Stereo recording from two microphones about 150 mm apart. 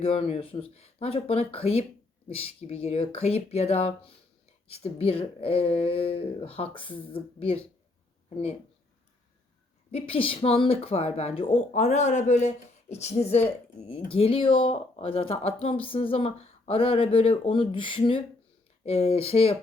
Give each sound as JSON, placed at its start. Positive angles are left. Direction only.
{"t": 0.0, "sound": "speech", "side_deg": 40}
{"t": 9.9, "sound": "speech", "side_deg": 40}
{"t": 18.8, "sound": "speech", "side_deg": 45}